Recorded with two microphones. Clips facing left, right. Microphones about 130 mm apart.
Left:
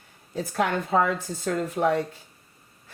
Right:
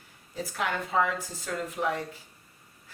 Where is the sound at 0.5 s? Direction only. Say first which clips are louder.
Left 5 dB; 40° left (ahead or behind).